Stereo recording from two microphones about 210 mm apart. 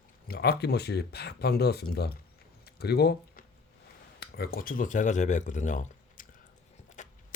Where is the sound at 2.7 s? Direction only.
50° left (ahead or behind).